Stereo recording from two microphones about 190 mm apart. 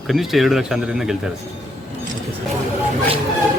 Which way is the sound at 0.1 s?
Centre (ahead or behind).